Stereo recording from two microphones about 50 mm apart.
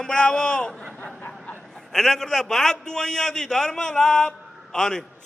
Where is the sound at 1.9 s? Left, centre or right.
Centre.